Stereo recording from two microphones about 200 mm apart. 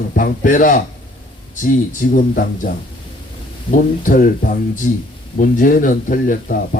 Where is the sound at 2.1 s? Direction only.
45° left (ahead or behind).